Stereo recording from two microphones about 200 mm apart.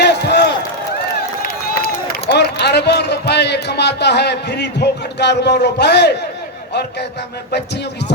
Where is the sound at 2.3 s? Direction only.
55° left (ahead or behind).